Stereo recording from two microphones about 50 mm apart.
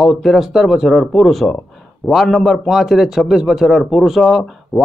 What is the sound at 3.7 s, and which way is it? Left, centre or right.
A man's voice, centre.